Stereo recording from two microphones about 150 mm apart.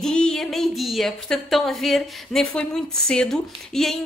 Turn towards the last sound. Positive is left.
turn(degrees=5)  # may be behind; listen again after turning